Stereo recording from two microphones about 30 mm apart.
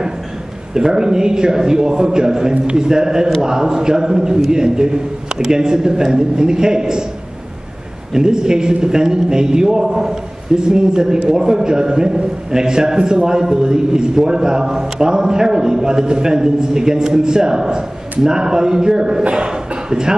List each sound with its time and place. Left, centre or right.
0.7 s a man's voice: right
2.5 s a man's voice: right
2.8 s a man's voice: right
8.1 s a man's voice: right